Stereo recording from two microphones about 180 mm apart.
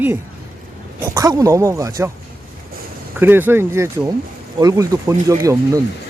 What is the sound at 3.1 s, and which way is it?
Speech, 10° right (ahead or behind).